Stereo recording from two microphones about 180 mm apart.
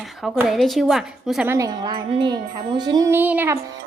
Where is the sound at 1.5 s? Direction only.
20° right (ahead or behind).